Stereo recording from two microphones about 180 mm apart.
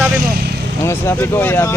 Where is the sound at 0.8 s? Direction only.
15° left (ahead or behind).